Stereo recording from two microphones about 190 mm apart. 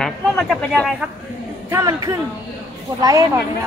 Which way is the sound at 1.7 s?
15° right (ahead or behind).